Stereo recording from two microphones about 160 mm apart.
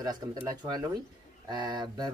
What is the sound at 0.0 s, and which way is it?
Speech, 25° right (ahead or behind).